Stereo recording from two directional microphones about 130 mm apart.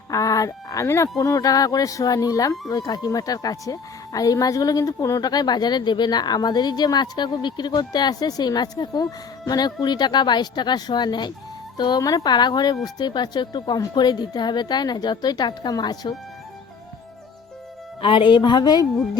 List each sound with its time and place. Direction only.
0.1 s a woman's voice: 25° left (ahead or behind)
18.0 s a woman's voice: 40° left (ahead or behind)